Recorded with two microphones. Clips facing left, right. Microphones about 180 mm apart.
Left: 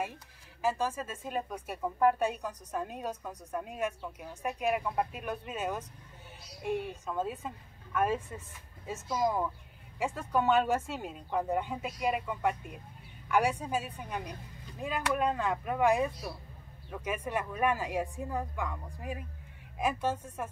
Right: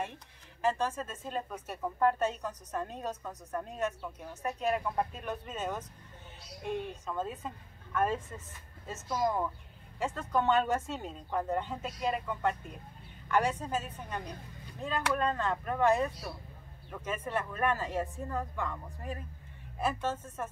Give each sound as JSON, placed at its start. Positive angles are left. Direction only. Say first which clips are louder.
{"t": 0.0, "sound": "speech", "louder": "left 1 dB", "side_deg": 5}